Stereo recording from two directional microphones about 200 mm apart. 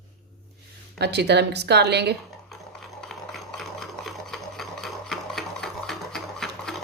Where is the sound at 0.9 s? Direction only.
55° right (ahead or behind).